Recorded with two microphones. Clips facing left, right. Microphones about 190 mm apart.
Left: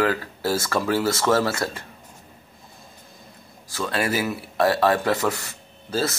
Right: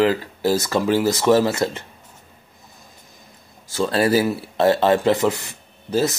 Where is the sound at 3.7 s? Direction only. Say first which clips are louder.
Right 7 dB; 30° right (ahead or behind).